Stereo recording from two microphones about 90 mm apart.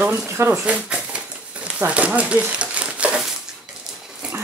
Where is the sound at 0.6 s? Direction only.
10° right (ahead or behind).